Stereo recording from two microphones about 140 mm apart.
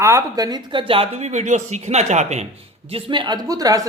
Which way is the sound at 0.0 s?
20° right (ahead or behind).